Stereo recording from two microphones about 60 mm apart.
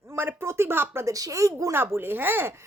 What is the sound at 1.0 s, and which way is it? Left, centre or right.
Speech, right.